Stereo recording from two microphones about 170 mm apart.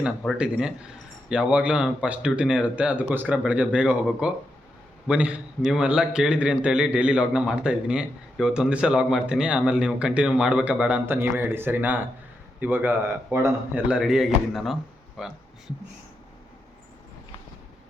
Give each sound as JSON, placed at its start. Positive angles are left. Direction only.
{"t": 0.3, "sound": "a man's voice", "side_deg": -5}